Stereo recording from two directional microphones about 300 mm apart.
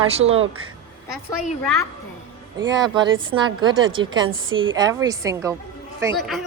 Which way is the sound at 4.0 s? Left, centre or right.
Centre.